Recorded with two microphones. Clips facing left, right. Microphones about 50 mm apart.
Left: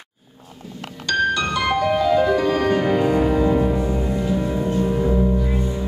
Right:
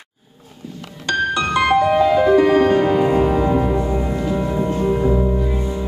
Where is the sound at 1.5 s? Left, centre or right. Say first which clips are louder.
Right 5 dB; right.